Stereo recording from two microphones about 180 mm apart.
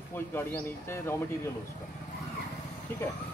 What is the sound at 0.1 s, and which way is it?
Speech, 10° left (ahead or behind).